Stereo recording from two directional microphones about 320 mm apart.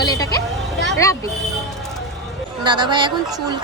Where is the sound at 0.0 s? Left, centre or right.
Centre.